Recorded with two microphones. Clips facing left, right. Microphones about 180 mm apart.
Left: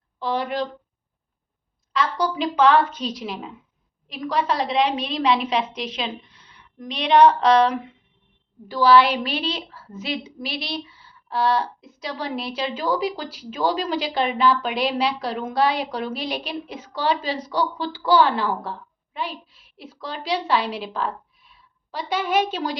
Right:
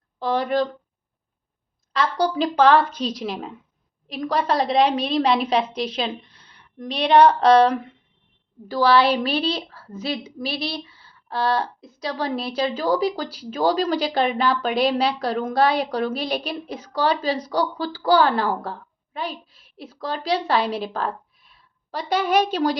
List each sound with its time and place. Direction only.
0.2 s speech: 40° right (ahead or behind)
1.9 s a woman's voice: 35° right (ahead or behind)